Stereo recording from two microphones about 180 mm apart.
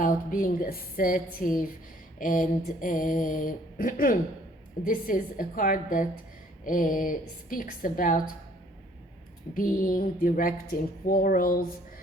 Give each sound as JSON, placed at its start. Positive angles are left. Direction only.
{"t": 0.0, "sound": "mantra", "side_deg": 50}
{"t": 9.6, "sound": "mantra", "side_deg": 50}